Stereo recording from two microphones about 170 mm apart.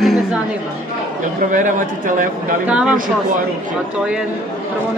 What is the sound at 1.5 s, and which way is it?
Speech, 50° right (ahead or behind).